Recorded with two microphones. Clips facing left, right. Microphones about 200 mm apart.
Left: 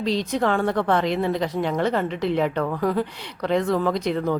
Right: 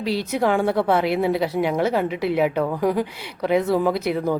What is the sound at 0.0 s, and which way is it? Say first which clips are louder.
A woman's voice: right 1 dB; 10° right (ahead or behind).